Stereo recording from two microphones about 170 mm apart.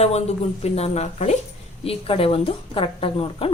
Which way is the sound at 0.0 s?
40° left (ahead or behind).